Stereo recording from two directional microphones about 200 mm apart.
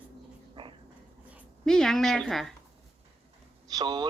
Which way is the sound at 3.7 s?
20° right (ahead or behind).